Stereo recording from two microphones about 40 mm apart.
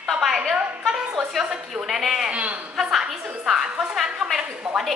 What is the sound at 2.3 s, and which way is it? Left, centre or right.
Speech, right.